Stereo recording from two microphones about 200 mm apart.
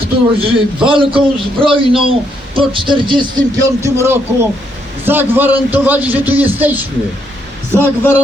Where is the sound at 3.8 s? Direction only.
10° right (ahead or behind).